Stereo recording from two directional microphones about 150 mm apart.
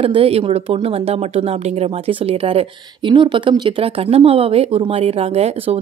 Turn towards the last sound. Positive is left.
turn(degrees=-45)  # may be behind; listen again after turning